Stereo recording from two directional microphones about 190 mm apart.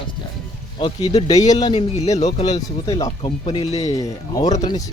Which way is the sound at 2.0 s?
35° left (ahead or behind).